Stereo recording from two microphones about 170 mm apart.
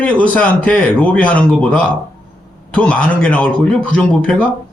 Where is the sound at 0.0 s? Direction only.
10° left (ahead or behind).